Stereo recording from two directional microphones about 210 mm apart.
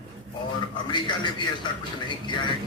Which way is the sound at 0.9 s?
20° left (ahead or behind).